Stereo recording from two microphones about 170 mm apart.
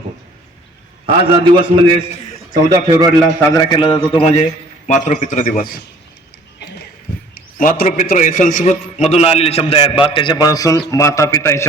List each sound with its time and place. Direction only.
1.0 s a man's voice: 35° right (ahead or behind)
3.5 s a man's voice: 25° left (ahead or behind); by 5.8 s 55° left (ahead or behind)
7.3 s a sound: 55° left (ahead or behind)
7.9 s a man's voice: 50° left (ahead or behind)
9.0 s a man's voice: 40° left (ahead or behind); by 11.6 s 15° left (ahead or behind)